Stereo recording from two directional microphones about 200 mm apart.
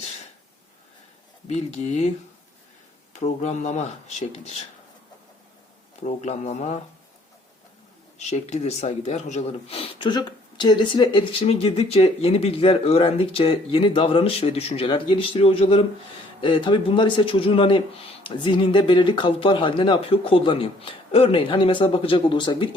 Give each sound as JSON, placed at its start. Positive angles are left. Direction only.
{"t": 1.5, "sound": "speech", "side_deg": 35}
{"t": 3.2, "sound": "speech", "side_deg": 35}
{"t": 6.0, "sound": "speech", "side_deg": 35}
{"t": 8.2, "sound": "speech", "side_deg": 35}